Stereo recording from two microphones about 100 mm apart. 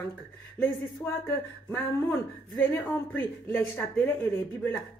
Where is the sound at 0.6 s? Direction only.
20° left (ahead or behind).